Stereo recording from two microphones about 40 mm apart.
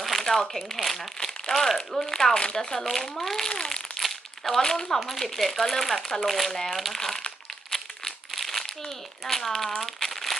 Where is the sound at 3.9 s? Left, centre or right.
Centre.